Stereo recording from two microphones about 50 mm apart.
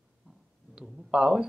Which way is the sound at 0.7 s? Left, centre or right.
Right.